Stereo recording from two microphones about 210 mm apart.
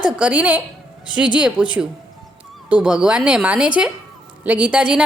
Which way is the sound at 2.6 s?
5° right (ahead or behind).